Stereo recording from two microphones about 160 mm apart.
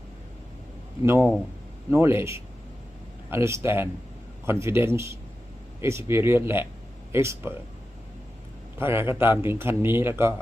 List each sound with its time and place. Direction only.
1.0 s a man's voice: 15° right (ahead or behind)
8.8 s a man's voice: 15° right (ahead or behind)